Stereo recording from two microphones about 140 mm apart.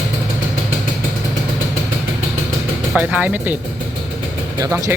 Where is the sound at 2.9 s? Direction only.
10° right (ahead or behind).